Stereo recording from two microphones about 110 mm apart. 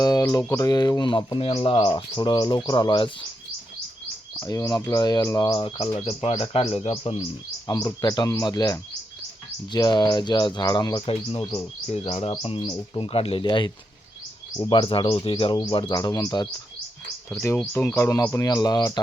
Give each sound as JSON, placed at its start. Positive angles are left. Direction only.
{"t": 0.0, "sound": "speech", "side_deg": 35}
{"t": 4.4, "sound": "speech", "side_deg": 30}
{"t": 6.4, "sound": "speech", "side_deg": 60}
{"t": 7.7, "sound": "speech", "side_deg": 35}
{"t": 11.9, "sound": "speech", "side_deg": 65}
{"t": 13.4, "sound": "speech", "side_deg": 45}
{"t": 15.7, "sound": "speech", "side_deg": 40}
{"t": 17.7, "sound": "speech", "side_deg": 25}